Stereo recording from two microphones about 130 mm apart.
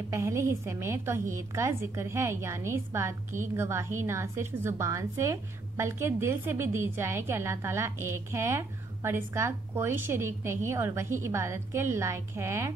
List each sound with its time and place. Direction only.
0.1 s a woman's voice: 20° right (ahead or behind)